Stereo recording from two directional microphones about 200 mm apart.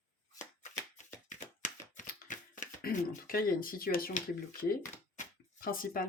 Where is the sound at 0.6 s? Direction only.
35° left (ahead or behind).